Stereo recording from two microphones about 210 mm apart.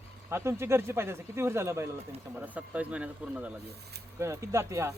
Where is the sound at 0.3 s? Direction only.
10° right (ahead or behind).